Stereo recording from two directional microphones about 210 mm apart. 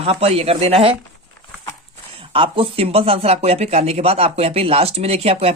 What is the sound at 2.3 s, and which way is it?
Speech, 25° right (ahead or behind).